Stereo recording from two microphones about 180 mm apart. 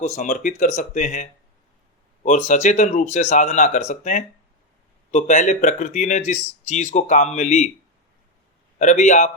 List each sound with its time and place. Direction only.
0.0 s speech: 40° left (ahead or behind)
8.8 s speech: 40° left (ahead or behind)